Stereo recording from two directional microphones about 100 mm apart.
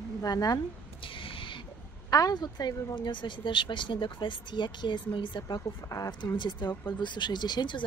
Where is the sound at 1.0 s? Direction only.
60° left (ahead or behind).